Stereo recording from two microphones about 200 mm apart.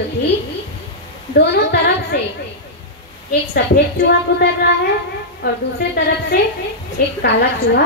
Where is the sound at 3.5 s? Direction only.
50° left (ahead or behind).